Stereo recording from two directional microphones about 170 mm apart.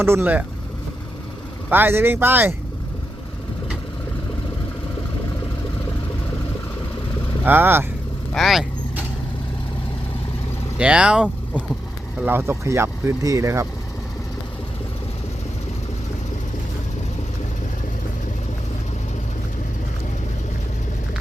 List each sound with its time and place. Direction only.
0.0 s speech: 15° right (ahead or behind)
1.7 s speech: 10° right (ahead or behind)
7.4 s speech: 10° right (ahead or behind)
8.3 s speech: centre (ahead or behind)
10.8 s speech: 5° right (ahead or behind)